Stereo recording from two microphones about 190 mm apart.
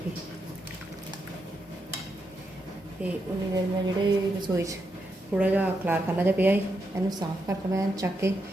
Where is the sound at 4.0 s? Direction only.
20° right (ahead or behind).